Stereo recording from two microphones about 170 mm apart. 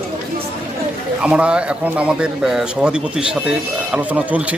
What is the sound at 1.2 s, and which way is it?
A man's voice, 5° right (ahead or behind).